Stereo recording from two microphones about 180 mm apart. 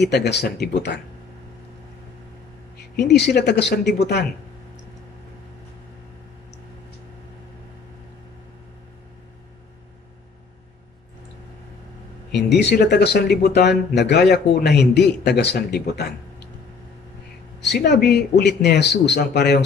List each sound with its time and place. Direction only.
0.0 s speech: 70° left (ahead or behind)
3.0 s speech: 65° left (ahead or behind)
12.3 s speech: 70° left (ahead or behind)
17.6 s speech: 70° left (ahead or behind)